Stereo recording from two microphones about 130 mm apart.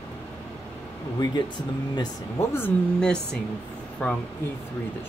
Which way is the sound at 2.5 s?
15° left (ahead or behind).